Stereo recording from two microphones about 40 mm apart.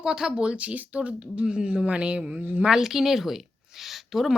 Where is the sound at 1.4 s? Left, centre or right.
Centre.